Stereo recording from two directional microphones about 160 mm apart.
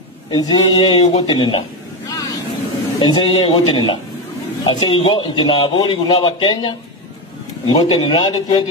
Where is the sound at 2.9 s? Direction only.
30° left (ahead or behind).